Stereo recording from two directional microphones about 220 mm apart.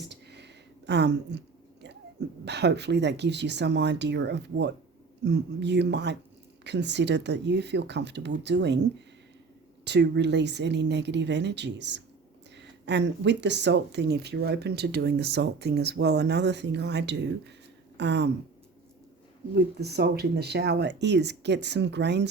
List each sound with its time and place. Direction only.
0.3 s a sound: 50° right (ahead or behind)
2.4 s speech: 50° right (ahead or behind)
9.8 s speech: 50° right (ahead or behind)
19.8 s speech: 45° right (ahead or behind)